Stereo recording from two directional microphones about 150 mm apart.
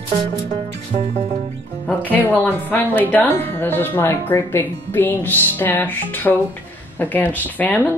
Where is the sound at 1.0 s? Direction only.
50° right (ahead or behind).